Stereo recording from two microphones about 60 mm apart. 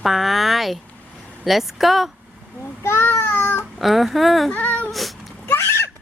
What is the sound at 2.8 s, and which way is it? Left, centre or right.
Babbling, left.